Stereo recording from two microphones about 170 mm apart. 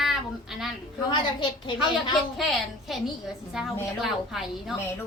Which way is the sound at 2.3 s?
Centre (ahead or behind).